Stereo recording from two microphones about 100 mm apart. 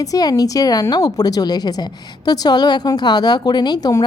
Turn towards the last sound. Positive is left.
turn(degrees=40)  # may be behind; listen again after turning